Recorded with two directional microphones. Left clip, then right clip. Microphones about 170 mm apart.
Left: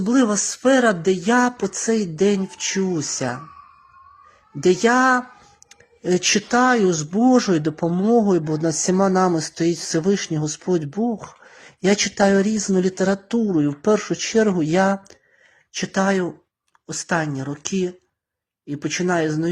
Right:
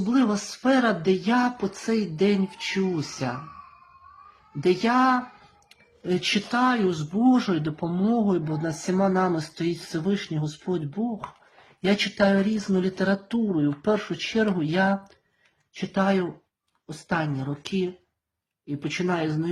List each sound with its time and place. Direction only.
0.1 s speech: 45° left (ahead or behind)
4.6 s speech: 45° left (ahead or behind)